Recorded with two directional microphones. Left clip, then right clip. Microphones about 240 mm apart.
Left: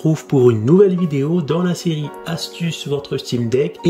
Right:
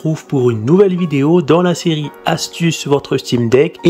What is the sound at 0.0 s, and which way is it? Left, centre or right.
Speech, centre.